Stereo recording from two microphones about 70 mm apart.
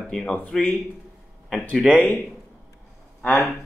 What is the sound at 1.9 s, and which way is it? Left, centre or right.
Speech, left.